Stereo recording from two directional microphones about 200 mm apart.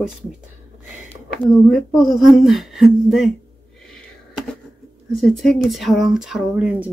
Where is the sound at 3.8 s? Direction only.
Centre (ahead or behind).